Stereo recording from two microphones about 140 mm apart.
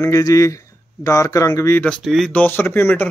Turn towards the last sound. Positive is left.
turn(degrees=15)  # may be behind; listen again after turning